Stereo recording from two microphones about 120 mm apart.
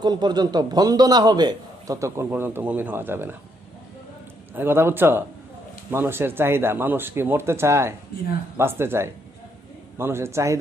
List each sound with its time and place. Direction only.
0.0 s a man's voice: 35° right (ahead or behind); by 3.3 s 20° right (ahead or behind)
4.5 s speech: 20° right (ahead or behind)